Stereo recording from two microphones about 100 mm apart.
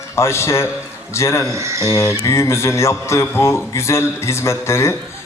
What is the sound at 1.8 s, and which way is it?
A man's voice, 30° left (ahead or behind).